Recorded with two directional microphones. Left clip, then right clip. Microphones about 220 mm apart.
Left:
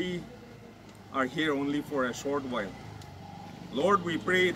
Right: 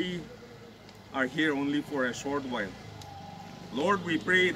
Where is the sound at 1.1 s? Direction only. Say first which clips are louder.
Right 1 dB; 5° left (ahead or behind).